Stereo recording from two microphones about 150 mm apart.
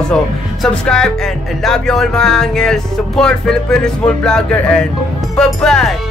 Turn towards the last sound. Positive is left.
turn(degrees=0)  # may be behind; listen again after turning